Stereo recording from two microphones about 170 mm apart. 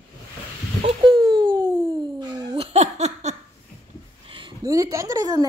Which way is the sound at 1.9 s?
25° right (ahead or behind).